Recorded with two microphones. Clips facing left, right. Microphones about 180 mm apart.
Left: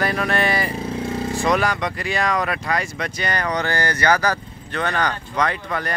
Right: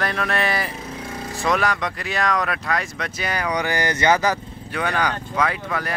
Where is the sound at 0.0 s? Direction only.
Centre (ahead or behind); by 4.4 s 20° right (ahead or behind).